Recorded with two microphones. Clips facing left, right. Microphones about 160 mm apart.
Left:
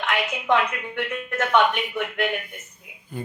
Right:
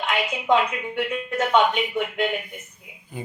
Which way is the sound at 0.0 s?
15° right (ahead or behind).